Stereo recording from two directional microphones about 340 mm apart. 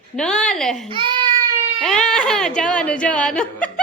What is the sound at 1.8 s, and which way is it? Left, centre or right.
Speech, centre.